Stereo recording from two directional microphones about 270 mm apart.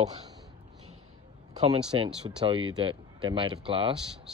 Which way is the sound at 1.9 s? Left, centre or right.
Centre.